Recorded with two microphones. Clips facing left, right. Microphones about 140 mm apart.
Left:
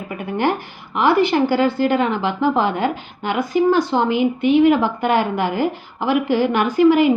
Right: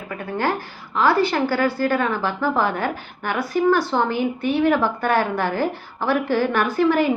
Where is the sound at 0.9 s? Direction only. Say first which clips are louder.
Left 3 dB; 20° left (ahead or behind).